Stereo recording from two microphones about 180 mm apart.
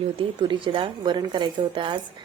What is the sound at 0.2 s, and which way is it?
A woman's voice, 30° right (ahead or behind).